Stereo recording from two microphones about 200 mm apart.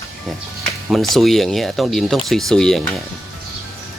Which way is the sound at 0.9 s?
Centre (ahead or behind).